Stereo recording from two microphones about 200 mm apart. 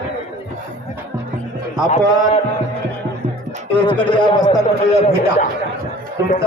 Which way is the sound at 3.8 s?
25° left (ahead or behind).